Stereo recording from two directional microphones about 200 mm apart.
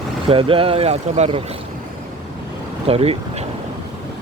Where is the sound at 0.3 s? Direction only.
25° right (ahead or behind).